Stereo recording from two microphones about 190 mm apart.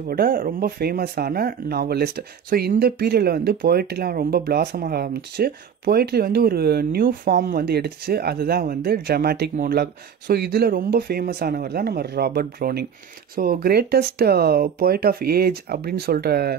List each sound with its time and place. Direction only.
0.1 s speech: 50° right (ahead or behind)